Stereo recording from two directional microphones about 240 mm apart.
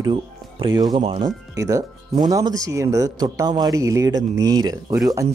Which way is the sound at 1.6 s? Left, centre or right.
Centre.